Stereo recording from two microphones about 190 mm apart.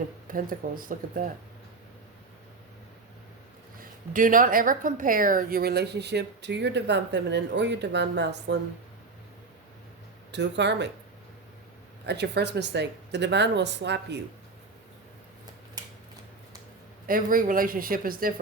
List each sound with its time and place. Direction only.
0.3 s speech: 45° right (ahead or behind)
4.1 s speech: 45° right (ahead or behind); by 8.5 s 65° right (ahead or behind)
10.3 s speech: 65° right (ahead or behind)
12.0 s speech: 60° right (ahead or behind)
17.1 s speech: 45° right (ahead or behind)